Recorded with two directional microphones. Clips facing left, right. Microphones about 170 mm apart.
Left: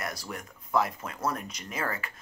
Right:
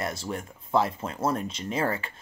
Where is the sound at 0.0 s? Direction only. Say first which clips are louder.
Right 5 dB; 25° right (ahead or behind).